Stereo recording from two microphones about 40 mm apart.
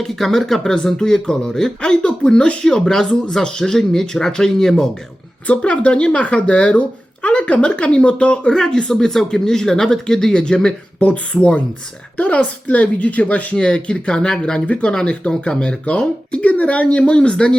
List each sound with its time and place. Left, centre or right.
0.0 s speech: centre
5.5 s speech: left
8.5 s speech: centre
11.0 s a woman's voice: left
13.6 s speech: left
15.0 s a woman's voice: left